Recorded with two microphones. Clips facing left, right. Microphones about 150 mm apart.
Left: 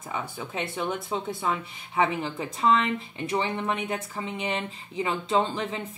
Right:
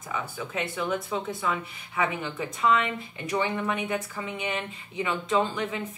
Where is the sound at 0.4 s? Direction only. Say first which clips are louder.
Right 1 dB; 30° left (ahead or behind).